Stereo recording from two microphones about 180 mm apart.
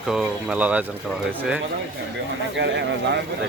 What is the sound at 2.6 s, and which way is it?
Speech, 75° right (ahead or behind).